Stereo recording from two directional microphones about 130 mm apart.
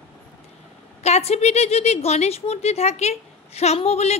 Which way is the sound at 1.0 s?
55° left (ahead or behind).